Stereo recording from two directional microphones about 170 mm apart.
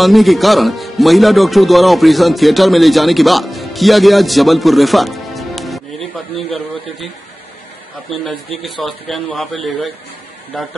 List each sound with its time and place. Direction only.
0.0 s speech: centre (ahead or behind)
8.6 s speech: centre (ahead or behind)